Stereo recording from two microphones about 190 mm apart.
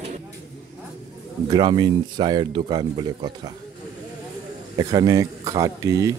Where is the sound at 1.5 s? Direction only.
20° right (ahead or behind).